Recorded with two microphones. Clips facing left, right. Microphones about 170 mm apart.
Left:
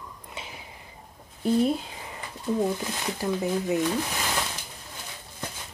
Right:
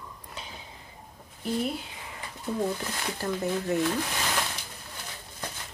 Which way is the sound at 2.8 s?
5° left (ahead or behind).